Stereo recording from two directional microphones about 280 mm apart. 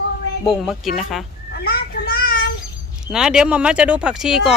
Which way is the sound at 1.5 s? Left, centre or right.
Left.